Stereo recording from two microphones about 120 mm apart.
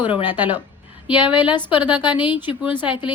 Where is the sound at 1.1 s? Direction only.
10° right (ahead or behind).